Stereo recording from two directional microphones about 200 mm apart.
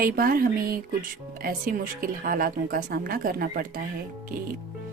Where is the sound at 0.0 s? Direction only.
45° right (ahead or behind).